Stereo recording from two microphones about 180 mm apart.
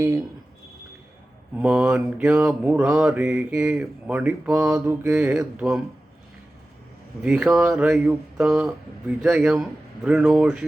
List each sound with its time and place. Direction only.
0.0 s speech: 20° right (ahead or behind)
1.5 s mantra: 5° right (ahead or behind)
7.2 s mantra: 5° right (ahead or behind)